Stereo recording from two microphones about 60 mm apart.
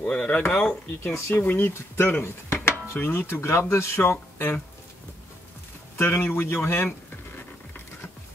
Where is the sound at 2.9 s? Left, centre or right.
Left.